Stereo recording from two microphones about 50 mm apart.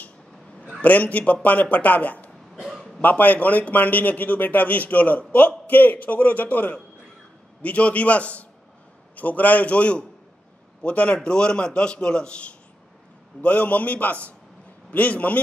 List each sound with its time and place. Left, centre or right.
0.8 s a man's voice: left
2.5 s a sound: centre
3.0 s a man's voice: left